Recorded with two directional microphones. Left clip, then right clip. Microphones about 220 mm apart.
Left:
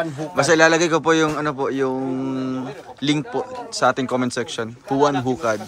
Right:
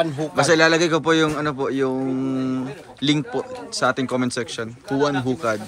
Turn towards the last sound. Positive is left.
turn(degrees=15)  # may be behind; listen again after turning